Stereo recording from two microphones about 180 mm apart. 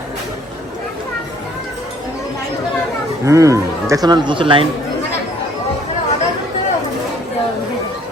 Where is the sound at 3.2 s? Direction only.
15° right (ahead or behind).